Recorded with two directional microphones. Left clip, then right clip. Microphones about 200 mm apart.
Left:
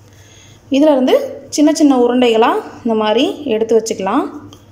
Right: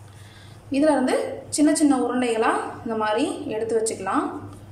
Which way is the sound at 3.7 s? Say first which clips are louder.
Left 7 dB; 40° left (ahead or behind).